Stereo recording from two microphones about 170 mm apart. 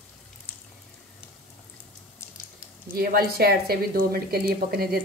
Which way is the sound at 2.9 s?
60° right (ahead or behind).